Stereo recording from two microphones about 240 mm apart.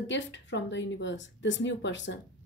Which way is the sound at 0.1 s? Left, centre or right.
Left.